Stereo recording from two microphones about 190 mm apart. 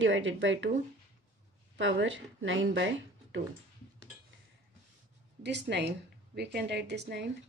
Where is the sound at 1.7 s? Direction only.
75° right (ahead or behind).